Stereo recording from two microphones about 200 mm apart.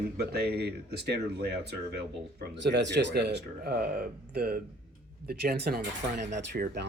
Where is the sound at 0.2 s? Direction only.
55° right (ahead or behind).